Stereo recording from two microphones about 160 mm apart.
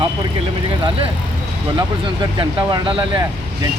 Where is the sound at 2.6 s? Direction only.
30° right (ahead or behind).